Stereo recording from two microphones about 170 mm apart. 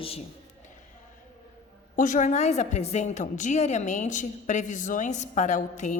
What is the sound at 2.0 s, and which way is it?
A woman's voice, 50° left (ahead or behind).